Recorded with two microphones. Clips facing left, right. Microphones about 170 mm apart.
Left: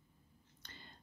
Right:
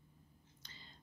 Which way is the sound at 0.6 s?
55° left (ahead or behind).